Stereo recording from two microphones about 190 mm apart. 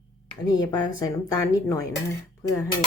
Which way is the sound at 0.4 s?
20° left (ahead or behind).